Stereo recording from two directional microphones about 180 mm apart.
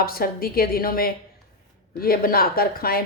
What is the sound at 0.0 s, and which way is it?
Speech, 55° left (ahead or behind).